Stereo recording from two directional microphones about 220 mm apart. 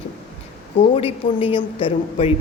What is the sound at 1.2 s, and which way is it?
A man's voice, 25° left (ahead or behind).